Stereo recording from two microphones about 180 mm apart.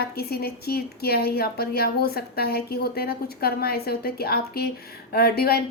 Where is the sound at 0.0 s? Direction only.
60° left (ahead or behind).